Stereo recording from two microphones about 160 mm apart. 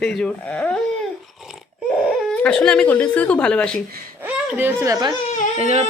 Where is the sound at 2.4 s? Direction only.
5° left (ahead or behind).